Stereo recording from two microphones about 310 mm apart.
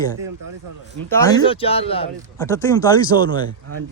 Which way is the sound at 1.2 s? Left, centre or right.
Centre.